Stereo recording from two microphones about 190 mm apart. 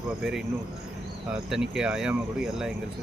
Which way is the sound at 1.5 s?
5° right (ahead or behind).